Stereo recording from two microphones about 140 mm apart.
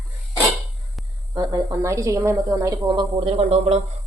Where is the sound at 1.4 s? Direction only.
25° right (ahead or behind); by 3.7 s 45° right (ahead or behind).